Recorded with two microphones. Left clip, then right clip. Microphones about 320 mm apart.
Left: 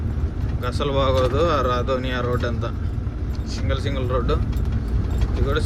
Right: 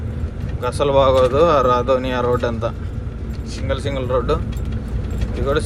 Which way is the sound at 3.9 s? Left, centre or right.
Centre.